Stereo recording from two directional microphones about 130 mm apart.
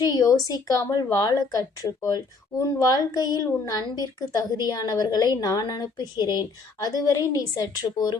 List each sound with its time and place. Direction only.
0.0 s a woman's voice: 30° left (ahead or behind)